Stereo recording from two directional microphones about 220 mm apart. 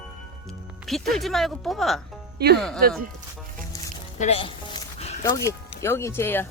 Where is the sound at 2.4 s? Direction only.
45° right (ahead or behind).